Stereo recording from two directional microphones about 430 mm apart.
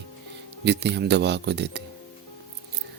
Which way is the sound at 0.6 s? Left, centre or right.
Right.